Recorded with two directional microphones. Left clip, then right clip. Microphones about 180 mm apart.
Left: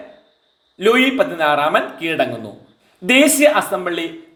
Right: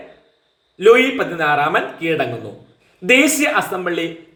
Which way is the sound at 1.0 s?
35° left (ahead or behind).